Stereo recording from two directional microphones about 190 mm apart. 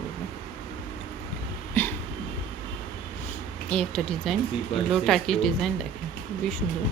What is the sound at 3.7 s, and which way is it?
Speech, 5° left (ahead or behind).